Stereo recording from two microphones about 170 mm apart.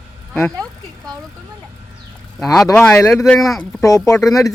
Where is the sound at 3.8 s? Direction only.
20° left (ahead or behind).